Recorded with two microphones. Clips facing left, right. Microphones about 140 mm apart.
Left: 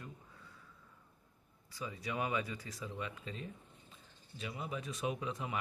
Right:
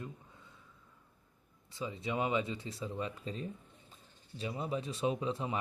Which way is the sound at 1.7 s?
25° right (ahead or behind).